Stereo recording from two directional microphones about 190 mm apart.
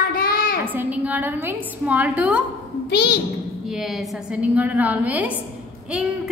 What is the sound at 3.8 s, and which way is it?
A woman's voice, 5° right (ahead or behind).